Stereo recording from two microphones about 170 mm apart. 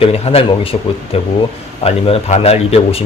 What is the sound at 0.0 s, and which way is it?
Speech, 35° left (ahead or behind).